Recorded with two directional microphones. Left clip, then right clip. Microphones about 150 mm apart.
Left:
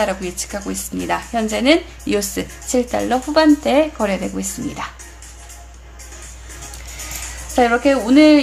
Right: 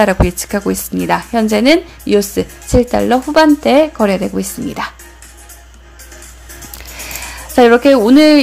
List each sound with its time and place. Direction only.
0.0 s a woman's voice: 45° right (ahead or behind)
2.0 s speech: 25° right (ahead or behind)
7.5 s a woman's voice: 45° right (ahead or behind)